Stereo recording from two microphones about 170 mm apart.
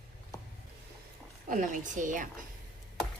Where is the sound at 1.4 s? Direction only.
50° right (ahead or behind).